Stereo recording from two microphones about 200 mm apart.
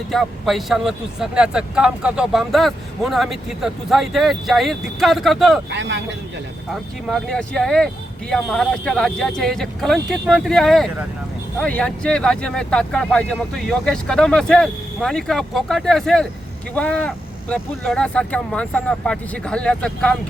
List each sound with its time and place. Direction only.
0.1 s speech: centre (ahead or behind)
5.7 s speech: 65° right (ahead or behind)
7.1 s speech: 5° left (ahead or behind)